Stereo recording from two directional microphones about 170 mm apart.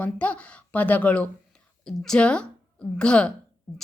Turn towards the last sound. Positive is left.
turn(degrees=5)  # may be behind; listen again after turning